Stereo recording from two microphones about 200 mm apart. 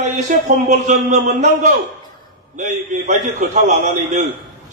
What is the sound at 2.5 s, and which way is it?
A man's voice, 35° right (ahead or behind).